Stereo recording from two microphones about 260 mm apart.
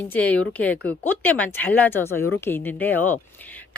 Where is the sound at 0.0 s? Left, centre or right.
Centre.